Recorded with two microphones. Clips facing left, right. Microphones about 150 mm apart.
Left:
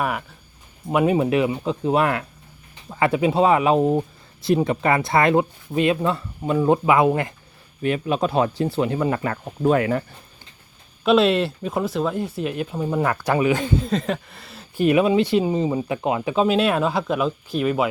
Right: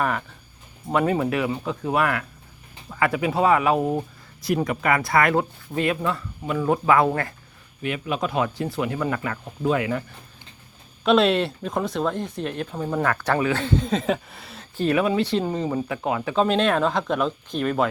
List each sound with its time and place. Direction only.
0.0 s speech: 10° left (ahead or behind)
7.8 s speech: 35° left (ahead or behind)
11.0 s speech: centre (ahead or behind)
13.8 s speech: centre (ahead or behind)
14.8 s speech: 15° left (ahead or behind)
16.3 s speech: 10° left (ahead or behind)